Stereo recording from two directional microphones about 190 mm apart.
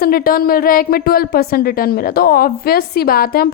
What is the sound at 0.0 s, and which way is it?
A woman's voice, 50° left (ahead or behind).